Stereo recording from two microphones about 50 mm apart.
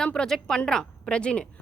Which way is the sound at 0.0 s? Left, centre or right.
Centre.